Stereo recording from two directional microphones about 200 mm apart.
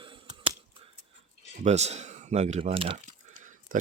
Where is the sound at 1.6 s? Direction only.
35° right (ahead or behind).